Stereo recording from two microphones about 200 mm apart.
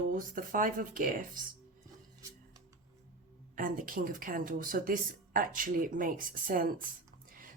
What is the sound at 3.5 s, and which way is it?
A woman's voice, 45° right (ahead or behind).